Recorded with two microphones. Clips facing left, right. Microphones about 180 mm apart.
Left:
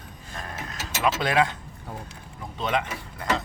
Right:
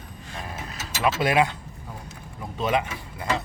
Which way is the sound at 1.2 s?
10° right (ahead or behind).